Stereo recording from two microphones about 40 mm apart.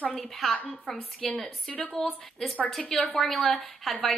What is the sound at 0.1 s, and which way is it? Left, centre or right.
A woman's voice, centre.